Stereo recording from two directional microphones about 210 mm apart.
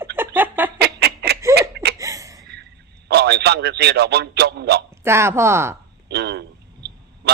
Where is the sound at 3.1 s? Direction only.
50° right (ahead or behind).